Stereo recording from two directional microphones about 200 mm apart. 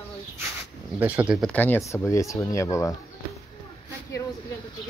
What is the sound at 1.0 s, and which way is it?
Speech, 10° right (ahead or behind).